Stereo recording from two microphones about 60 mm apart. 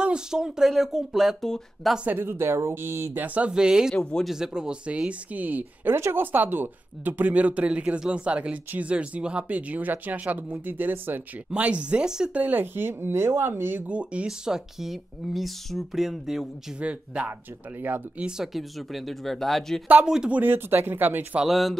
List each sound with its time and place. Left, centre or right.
0.0 s speech: centre
2.0 s speech: right
3.3 s speech: centre
3.9 s speech: centre
4.2 s speech: centre; by 11.2 s right
11.5 s speech: right
12.4 s speech: right
13.8 s speech: right; by 16.4 s centre
16.8 s speech: right
18.2 s speech: centre
20.2 s speech: right
21.5 s speech: centre